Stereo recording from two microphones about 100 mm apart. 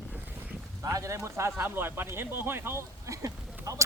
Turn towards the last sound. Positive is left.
turn(degrees=-30)  # may be behind; listen again after turning